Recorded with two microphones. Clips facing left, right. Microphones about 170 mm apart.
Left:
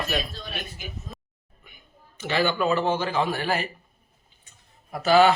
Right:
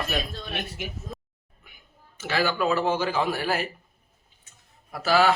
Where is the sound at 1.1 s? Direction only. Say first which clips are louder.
Right 5 dB; centre (ahead or behind).